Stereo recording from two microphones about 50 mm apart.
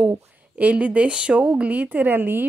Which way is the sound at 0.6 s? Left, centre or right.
Right.